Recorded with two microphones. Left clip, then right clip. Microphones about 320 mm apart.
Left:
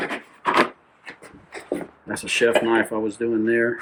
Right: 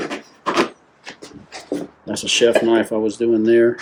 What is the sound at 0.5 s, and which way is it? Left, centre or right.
Rub, centre.